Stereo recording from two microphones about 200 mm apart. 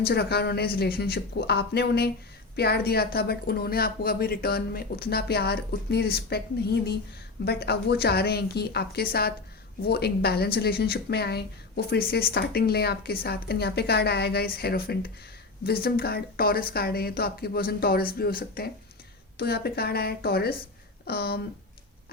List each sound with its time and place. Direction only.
0.0 s speech: 55° left (ahead or behind)
7.4 s speech: 55° left (ahead or behind)